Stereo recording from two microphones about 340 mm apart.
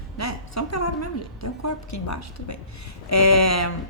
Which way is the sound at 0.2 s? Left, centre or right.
Left.